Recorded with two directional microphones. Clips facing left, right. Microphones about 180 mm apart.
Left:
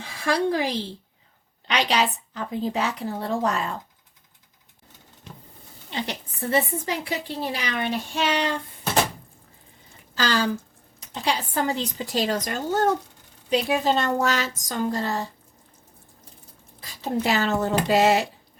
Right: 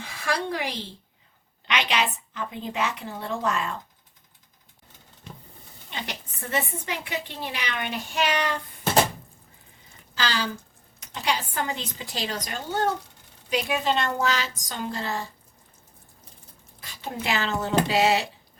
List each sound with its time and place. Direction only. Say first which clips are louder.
0.0 s a woman's voice: left 5 dB; 30° left (ahead or behind)
5.9 s a woman's voice: left 5 dB; 30° left (ahead or behind)
10.2 s a sound: left 5 dB; 45° left (ahead or behind)
11.1 s a woman's voice: left 2 dB; 30° left (ahead or behind)
13.5 s a woman's voice: left 4 dB; 35° left (ahead or behind)
17.0 s a woman's voice: left 5 dB; 40° left (ahead or behind)